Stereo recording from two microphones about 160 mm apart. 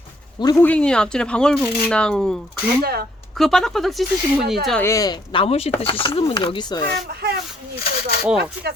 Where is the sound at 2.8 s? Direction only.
75° right (ahead or behind).